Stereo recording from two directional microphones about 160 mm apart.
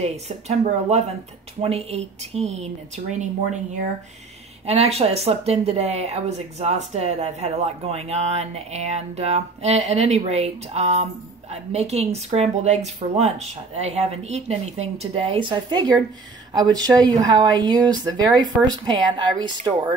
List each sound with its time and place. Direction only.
0.0 s speech: 40° right (ahead or behind)
4.6 s speech: 40° right (ahead or behind)